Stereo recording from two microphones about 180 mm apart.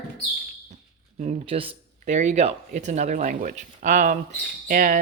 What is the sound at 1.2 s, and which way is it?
Speech, 30° right (ahead or behind).